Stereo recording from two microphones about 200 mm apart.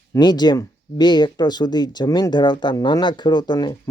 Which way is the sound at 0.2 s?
20° left (ahead or behind).